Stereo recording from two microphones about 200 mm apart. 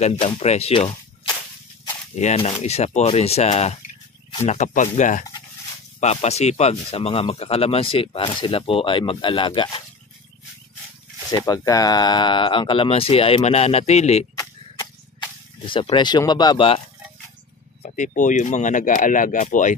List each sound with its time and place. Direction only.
0.0 s speech: 30° left (ahead or behind)
2.1 s speech: 35° left (ahead or behind)
11.3 s speech: 20° left (ahead or behind); by 14.2 s 35° left (ahead or behind)
14.8 s a sound: 25° left (ahead or behind)
17.8 s speech: 40° left (ahead or behind)